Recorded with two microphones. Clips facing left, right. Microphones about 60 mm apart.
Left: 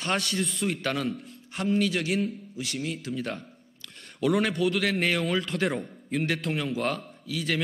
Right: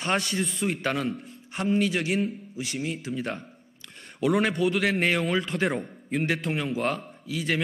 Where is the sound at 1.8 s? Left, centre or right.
Right.